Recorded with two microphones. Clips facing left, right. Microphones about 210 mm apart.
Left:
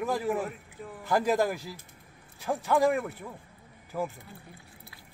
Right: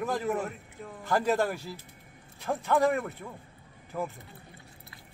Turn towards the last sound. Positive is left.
turn(degrees=5)  # may be behind; listen again after turning